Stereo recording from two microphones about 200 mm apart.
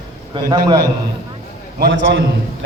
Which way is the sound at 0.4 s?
20° right (ahead or behind).